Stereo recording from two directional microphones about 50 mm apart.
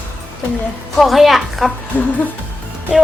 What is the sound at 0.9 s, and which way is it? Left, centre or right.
Speech, centre.